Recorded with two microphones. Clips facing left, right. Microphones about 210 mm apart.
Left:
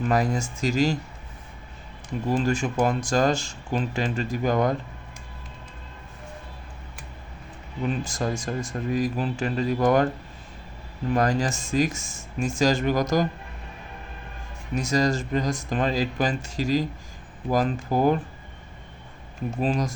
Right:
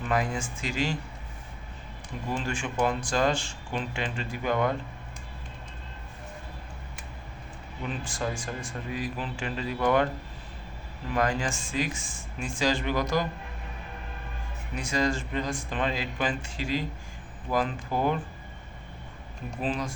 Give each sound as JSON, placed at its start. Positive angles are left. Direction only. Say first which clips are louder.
{"t": 0.1, "sound": "speech", "louder": "left 2 dB", "side_deg": 40}
{"t": 2.3, "sound": "speech", "louder": "left 7 dB", "side_deg": 40}
{"t": 8.0, "sound": "speech", "louder": "left 4 dB", "side_deg": 40}
{"t": 11.1, "sound": "speech", "louder": "left 4 dB", "side_deg": 40}
{"t": 14.8, "sound": "speech", "louder": "left 5 dB", "side_deg": 40}
{"t": 19.6, "sound": "speech", "louder": "left 5 dB", "side_deg": 40}